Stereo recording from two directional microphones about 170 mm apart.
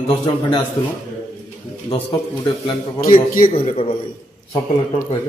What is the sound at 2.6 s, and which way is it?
A man's voice, 25° left (ahead or behind).